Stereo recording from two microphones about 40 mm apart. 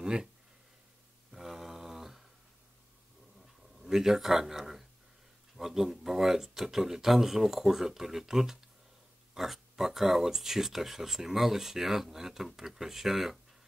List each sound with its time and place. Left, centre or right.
0.0 s speech: centre
1.3 s mantra: centre
3.8 s speech: centre